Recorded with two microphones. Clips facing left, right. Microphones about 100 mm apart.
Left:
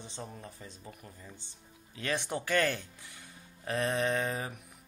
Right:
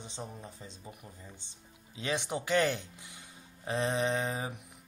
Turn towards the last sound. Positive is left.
turn(degrees=-20)  # may be behind; listen again after turning